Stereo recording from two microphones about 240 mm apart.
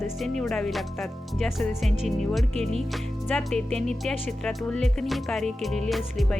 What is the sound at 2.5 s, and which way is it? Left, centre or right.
Speech, right.